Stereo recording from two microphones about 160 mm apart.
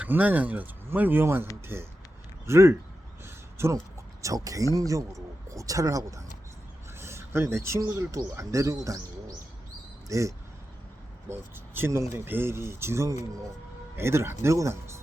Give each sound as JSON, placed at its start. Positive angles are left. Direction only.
{"t": 0.0, "sound": "speech", "side_deg": -10}
{"t": 3.2, "sound": "a sound", "side_deg": -15}
{"t": 4.2, "sound": "speech", "side_deg": -20}